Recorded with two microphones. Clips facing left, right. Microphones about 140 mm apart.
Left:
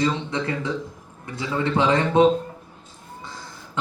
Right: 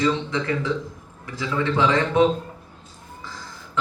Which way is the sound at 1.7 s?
30° left (ahead or behind).